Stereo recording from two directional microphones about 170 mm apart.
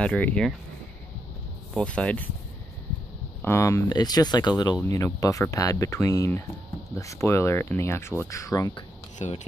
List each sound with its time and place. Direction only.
0.0 s speech: 5° left (ahead or behind)
1.8 s speech: 5° left (ahead or behind)
3.4 s speech: 15° left (ahead or behind)
9.2 s speech: 45° left (ahead or behind)